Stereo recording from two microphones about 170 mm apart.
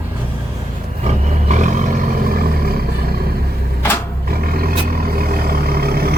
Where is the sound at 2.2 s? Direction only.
60° right (ahead or behind).